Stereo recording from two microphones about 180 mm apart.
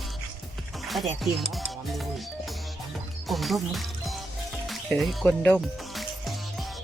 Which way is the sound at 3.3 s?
Centre (ahead or behind).